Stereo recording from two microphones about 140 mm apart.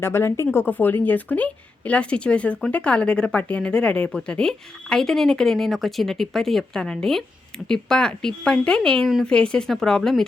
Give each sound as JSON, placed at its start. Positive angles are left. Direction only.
{"t": 0.0, "sound": "speech", "side_deg": 20}